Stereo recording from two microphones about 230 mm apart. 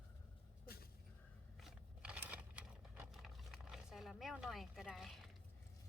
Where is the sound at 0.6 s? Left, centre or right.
Left.